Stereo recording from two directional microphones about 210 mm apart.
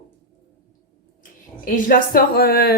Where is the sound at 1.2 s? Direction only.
40° left (ahead or behind).